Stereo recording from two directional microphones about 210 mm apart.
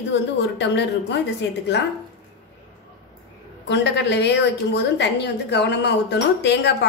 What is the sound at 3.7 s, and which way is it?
A woman's voice, 55° left (ahead or behind).